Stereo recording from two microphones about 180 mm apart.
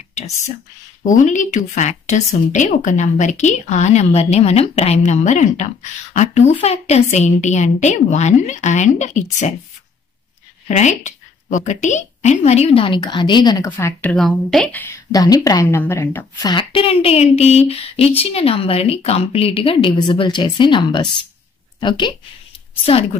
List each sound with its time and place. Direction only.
1.0 s a woman's voice: 45° left (ahead or behind)
10.7 s a woman's voice: 40° left (ahead or behind); by 13.7 s 25° left (ahead or behind)
13.7 s a woman's voice: 10° left (ahead or behind)
16.4 s a woman's voice: 30° left (ahead or behind)